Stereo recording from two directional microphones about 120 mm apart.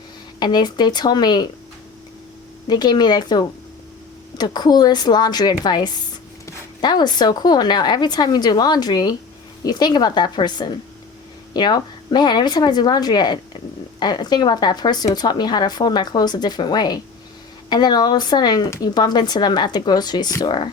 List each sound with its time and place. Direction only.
0.3 s speech: 35° left (ahead or behind)
2.6 s speech: 35° left (ahead or behind)